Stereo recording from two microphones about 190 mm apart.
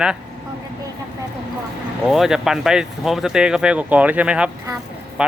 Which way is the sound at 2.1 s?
Centre (ahead or behind).